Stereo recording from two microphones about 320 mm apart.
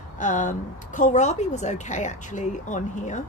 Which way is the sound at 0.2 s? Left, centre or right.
Left.